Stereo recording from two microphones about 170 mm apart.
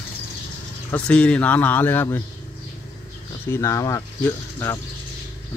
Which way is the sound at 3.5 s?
15° left (ahead or behind).